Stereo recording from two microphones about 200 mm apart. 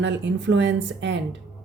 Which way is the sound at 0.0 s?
65° right (ahead or behind).